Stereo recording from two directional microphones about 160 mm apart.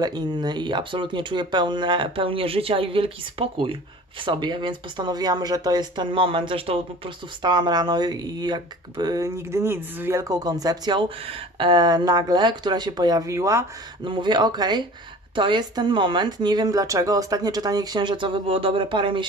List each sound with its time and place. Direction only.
0.0 s speech: 25° right (ahead or behind)
14.0 s speech: 30° right (ahead or behind)